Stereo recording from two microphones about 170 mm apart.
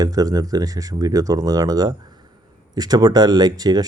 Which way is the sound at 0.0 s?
20° right (ahead or behind).